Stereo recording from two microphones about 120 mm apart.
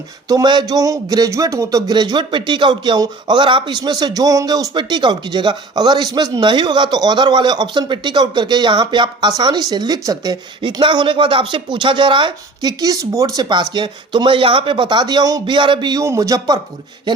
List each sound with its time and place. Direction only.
0.3 s a man's voice: 35° right (ahead or behind)
12.8 s a man's voice: 30° right (ahead or behind)